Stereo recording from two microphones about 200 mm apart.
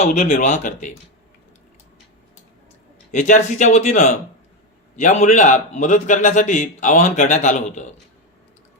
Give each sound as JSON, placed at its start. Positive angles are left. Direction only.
{"t": 0.0, "sound": "a man's voice", "side_deg": 40}
{"t": 3.1, "sound": "a man's voice", "side_deg": 40}